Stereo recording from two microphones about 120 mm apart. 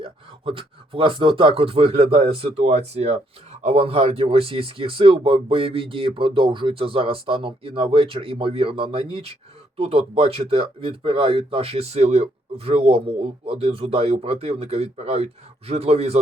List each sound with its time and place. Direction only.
0.0 s speech: 50° right (ahead or behind)